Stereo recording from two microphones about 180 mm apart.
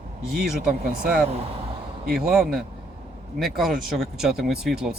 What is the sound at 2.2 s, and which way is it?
Speech, 5° right (ahead or behind).